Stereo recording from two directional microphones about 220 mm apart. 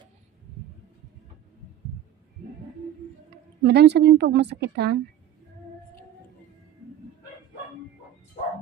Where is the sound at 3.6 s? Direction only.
50° right (ahead or behind).